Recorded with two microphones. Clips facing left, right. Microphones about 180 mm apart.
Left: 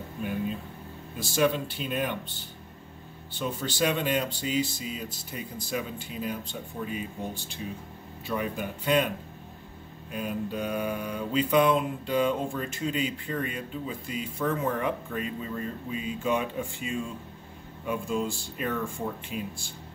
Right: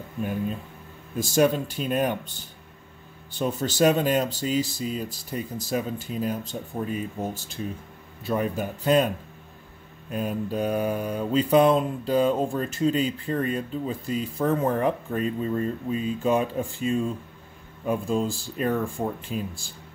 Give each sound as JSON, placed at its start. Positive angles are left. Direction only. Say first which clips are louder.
{"t": 1.3, "sound": "speech", "louder": "right 4 dB", "side_deg": -45}
{"t": 3.3, "sound": "mantra", "louder": "right 6 dB", "side_deg": -45}
{"t": 8.3, "sound": "mantra", "louder": "right 5 dB", "side_deg": -40}
{"t": 10.1, "sound": "mantra", "louder": "right 4 dB", "side_deg": -40}